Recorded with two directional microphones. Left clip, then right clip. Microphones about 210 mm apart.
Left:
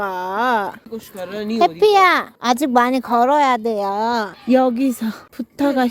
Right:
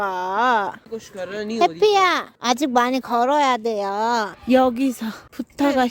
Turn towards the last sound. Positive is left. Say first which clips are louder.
# left 1 dB
turn(degrees=-5)  # may be behind; listen again after turning